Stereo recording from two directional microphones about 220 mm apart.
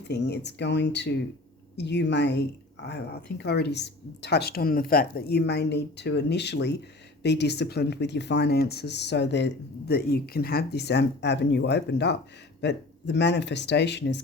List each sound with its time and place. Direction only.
0.1 s speech: 50° left (ahead or behind)